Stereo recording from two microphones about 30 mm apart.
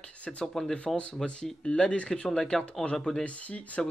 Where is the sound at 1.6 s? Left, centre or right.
Left.